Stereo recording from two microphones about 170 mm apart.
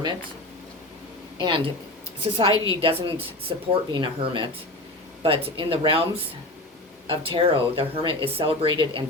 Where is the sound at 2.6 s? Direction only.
30° right (ahead or behind).